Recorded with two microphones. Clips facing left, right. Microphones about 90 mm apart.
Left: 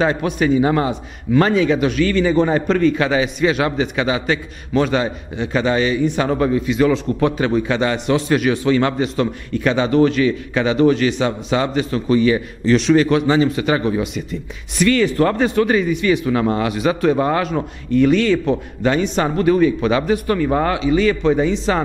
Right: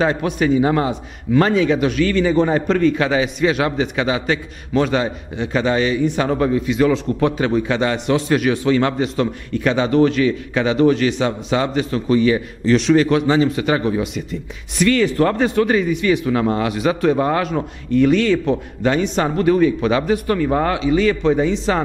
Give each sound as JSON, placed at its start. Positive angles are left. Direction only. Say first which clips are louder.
{"t": 0.0, "sound": "a man's voice", "louder": "even", "side_deg": 15}